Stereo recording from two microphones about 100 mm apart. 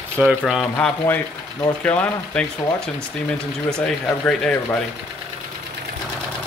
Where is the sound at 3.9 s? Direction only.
10° left (ahead or behind).